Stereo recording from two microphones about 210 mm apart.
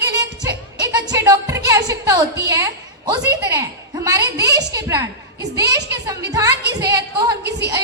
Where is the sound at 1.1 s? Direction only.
15° right (ahead or behind).